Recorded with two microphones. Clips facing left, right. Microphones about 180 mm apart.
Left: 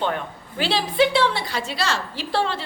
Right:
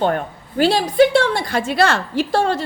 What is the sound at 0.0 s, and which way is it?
A woman's voice, 45° right (ahead or behind).